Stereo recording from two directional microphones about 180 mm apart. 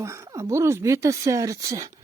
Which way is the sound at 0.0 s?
15° right (ahead or behind).